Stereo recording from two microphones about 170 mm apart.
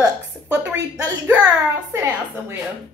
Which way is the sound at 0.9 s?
10° right (ahead or behind).